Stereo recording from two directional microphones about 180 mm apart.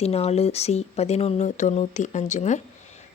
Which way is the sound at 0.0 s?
35° left (ahead or behind).